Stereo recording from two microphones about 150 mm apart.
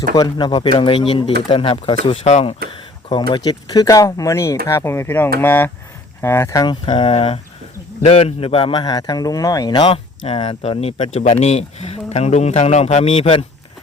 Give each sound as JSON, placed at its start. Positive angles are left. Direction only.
{"t": 0.2, "sound": "speech", "side_deg": 30}
{"t": 3.1, "sound": "speech", "side_deg": 30}
{"t": 6.8, "sound": "a man's voice", "side_deg": 35}